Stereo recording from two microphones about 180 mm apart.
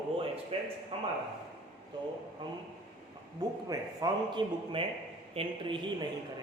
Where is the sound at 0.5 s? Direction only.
30° right (ahead or behind).